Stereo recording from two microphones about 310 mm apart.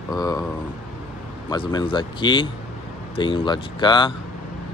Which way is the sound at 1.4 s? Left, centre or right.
Centre.